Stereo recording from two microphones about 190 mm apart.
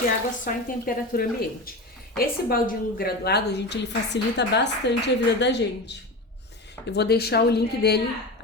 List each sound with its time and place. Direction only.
0.4 s a woman's voice: 50° left (ahead or behind); by 5.9 s 65° left (ahead or behind)
6.9 s a woman's voice: 60° left (ahead or behind)